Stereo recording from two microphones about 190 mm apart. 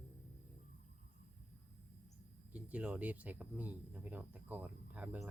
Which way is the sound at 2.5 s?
5° right (ahead or behind).